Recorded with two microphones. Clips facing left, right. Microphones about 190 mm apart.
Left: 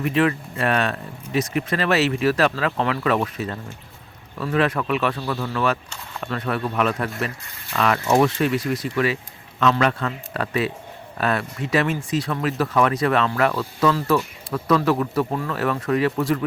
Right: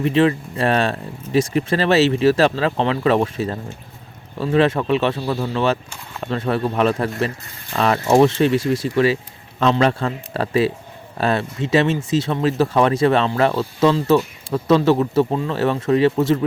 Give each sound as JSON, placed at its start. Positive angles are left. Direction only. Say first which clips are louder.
{"t": 0.0, "sound": "speech", "louder": "right 4 dB", "side_deg": -25}